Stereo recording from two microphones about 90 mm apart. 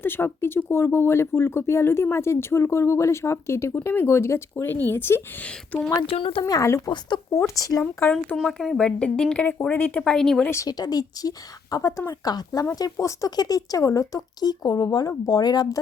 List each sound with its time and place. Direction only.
0.0 s speech: 25° left (ahead or behind)
6.1 s speech: 90° left
6.4 s speech: 35° left (ahead or behind)
6.9 s speech: 55° left (ahead or behind)
7.3 s speech: 40° left (ahead or behind)
8.4 s speech: centre (ahead or behind)
10.0 s speech: 5° left (ahead or behind)
10.7 s speech: 45° left (ahead or behind)